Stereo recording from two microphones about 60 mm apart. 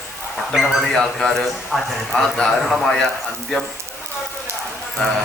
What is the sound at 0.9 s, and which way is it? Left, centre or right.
A man's voice, centre.